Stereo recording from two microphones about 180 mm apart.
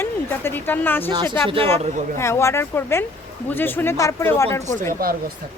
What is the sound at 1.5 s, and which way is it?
Speech, 30° right (ahead or behind).